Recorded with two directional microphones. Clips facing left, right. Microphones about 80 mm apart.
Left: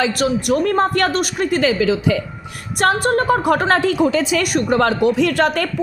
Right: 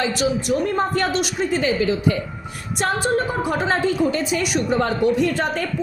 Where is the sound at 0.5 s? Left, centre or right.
Left.